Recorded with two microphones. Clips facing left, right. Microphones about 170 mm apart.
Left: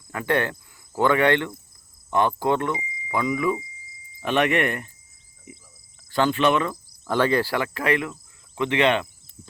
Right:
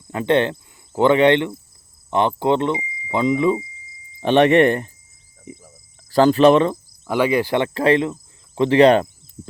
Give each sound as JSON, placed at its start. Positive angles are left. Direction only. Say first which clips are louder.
{"t": 0.1, "sound": "speech", "louder": "right 6 dB", "side_deg": -25}
{"t": 5.5, "sound": "cricket", "louder": "right 9 dB", "side_deg": -40}
{"t": 7.1, "sound": "speech", "louder": "right 3 dB", "side_deg": -10}